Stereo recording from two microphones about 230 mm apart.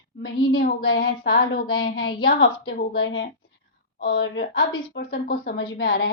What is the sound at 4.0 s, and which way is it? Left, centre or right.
A woman's voice, left.